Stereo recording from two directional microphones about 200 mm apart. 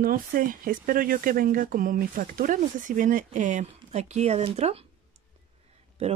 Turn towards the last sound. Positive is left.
turn(degrees=-30)  # may be behind; listen again after turning